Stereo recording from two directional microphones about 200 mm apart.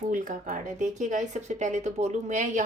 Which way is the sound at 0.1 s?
40° right (ahead or behind).